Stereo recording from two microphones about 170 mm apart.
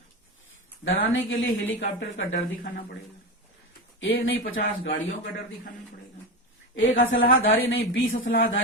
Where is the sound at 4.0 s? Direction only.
75° left (ahead or behind); by 4.6 s 55° left (ahead or behind).